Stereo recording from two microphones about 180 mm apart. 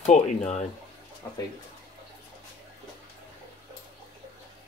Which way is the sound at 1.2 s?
15° left (ahead or behind).